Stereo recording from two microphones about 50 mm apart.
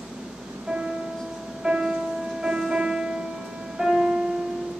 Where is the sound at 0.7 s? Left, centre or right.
Right; by 4.0 s centre.